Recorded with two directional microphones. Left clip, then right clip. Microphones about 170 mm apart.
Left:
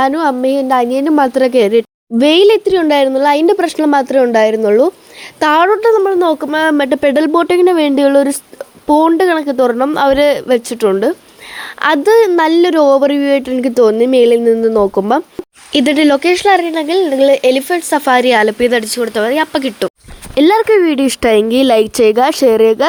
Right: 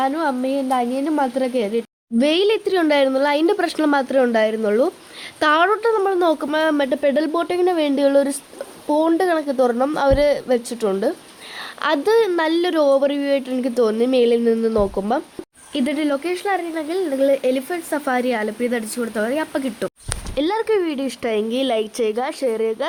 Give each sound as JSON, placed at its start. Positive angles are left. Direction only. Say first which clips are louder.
{"t": 0.0, "sound": "a woman's voice", "louder": "left 8 dB", "side_deg": 50}
{"t": 2.1, "sound": "speech", "louder": "left 9 dB", "side_deg": 30}